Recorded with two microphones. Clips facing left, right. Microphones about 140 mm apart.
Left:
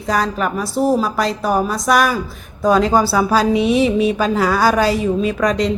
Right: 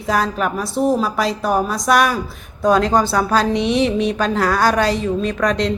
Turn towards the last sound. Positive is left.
turn(degrees=0)  # may be behind; listen again after turning